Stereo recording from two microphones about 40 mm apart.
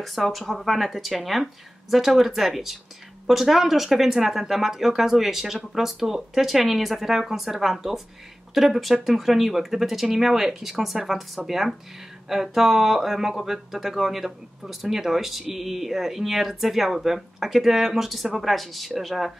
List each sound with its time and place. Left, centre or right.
0.0 s speech: centre